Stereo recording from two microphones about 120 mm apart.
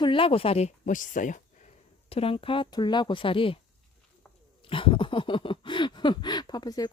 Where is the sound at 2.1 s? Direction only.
50° left (ahead or behind).